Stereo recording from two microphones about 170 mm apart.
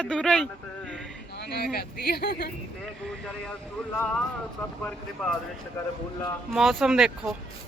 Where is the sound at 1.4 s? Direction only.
70° left (ahead or behind).